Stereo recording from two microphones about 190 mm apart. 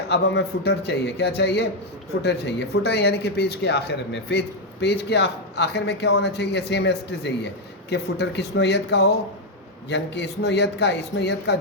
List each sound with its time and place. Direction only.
0.1 s speech: 60° left (ahead or behind)